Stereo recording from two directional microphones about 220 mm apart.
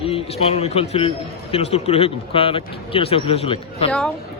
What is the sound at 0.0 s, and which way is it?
A man's voice, 25° left (ahead or behind).